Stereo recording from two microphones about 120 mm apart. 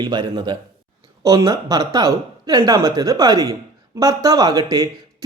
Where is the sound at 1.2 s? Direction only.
30° right (ahead or behind).